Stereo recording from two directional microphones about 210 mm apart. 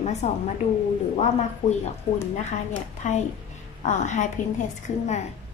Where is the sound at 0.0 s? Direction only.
35° left (ahead or behind).